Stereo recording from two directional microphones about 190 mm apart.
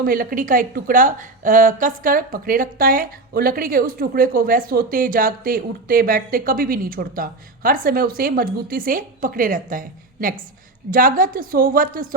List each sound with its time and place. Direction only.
0.0 s a woman's voice: 50° right (ahead or behind)